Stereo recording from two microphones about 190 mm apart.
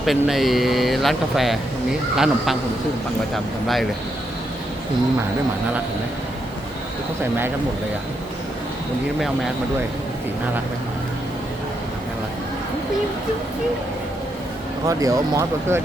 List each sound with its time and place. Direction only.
0.0 s speech: centre (ahead or behind)
14.8 s speech: 15° right (ahead or behind)